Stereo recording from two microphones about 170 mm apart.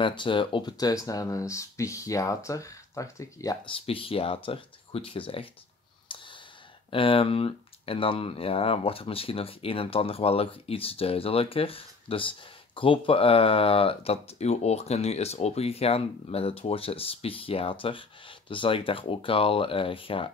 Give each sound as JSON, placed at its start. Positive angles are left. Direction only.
{"t": 0.0, "sound": "speech", "side_deg": 30}
{"t": 3.6, "sound": "speech", "side_deg": 30}
{"t": 6.0, "sound": "sigh", "side_deg": 30}
{"t": 6.9, "sound": "speech", "side_deg": 30}